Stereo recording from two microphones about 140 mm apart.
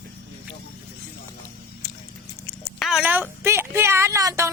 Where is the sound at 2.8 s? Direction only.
Centre (ahead or behind).